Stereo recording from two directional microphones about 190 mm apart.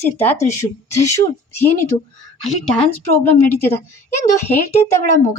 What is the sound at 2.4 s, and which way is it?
Speech, 5° left (ahead or behind).